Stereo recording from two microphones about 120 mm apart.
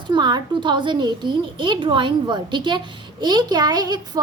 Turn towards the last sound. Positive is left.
turn(degrees=-35)  # may be behind; listen again after turning